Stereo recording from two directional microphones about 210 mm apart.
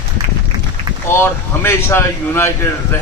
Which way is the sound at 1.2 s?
10° left (ahead or behind).